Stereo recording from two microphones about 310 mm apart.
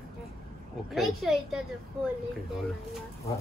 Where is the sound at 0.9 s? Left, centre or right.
Centre.